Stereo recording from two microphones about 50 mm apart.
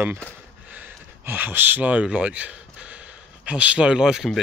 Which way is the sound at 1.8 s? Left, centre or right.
Right.